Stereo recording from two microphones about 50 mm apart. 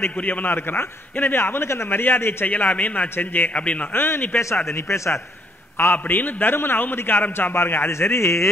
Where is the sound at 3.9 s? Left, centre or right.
Left.